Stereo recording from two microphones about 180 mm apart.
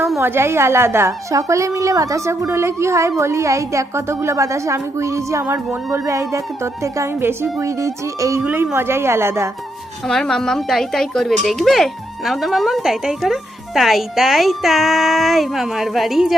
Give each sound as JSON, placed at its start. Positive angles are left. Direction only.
{"t": 0.2, "sound": "a woman's voice", "side_deg": -15}
{"t": 10.1, "sound": "speech", "side_deg": 0}